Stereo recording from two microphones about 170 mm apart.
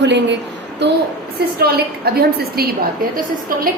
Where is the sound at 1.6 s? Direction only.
65° right (ahead or behind).